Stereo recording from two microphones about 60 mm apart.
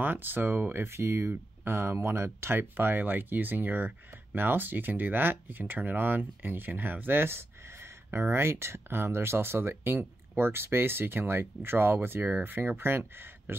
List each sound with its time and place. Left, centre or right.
0.0 s speech: right
0.8 s speech: right